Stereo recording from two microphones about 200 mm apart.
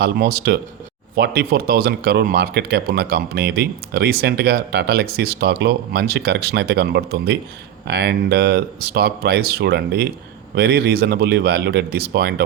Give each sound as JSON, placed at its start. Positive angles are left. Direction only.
{"t": 0.0, "sound": "speech", "side_deg": -50}